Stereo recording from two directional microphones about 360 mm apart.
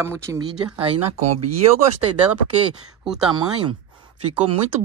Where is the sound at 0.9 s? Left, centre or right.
Right.